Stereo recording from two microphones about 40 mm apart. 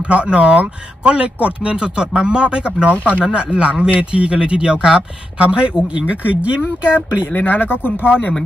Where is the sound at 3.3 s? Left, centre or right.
Right.